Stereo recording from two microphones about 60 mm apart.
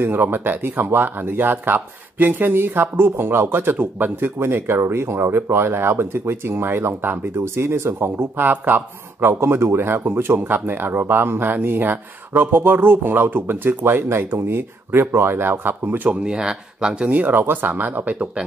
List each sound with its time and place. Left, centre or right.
0.0 s speech: right
4.4 s speech: right
8.5 s speech: right
9.3 s speech: right
16.1 s speech: centre
17.1 s speech: right